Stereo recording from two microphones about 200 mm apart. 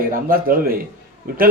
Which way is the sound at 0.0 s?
45° right (ahead or behind).